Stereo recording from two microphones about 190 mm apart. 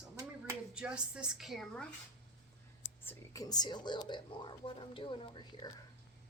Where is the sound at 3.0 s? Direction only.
20° left (ahead or behind).